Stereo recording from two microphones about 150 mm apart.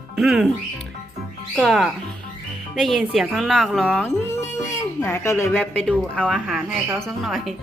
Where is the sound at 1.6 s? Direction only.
Centre (ahead or behind).